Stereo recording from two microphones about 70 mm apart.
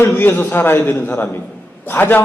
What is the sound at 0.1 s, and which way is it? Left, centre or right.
A man's voice, left.